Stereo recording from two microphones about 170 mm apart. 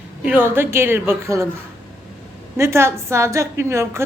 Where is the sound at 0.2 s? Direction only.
10° right (ahead or behind).